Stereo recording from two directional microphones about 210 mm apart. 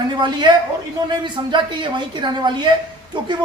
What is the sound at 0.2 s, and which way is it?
A man's voice, 20° right (ahead or behind).